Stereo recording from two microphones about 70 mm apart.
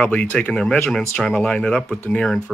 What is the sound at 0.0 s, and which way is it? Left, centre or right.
Speech, centre.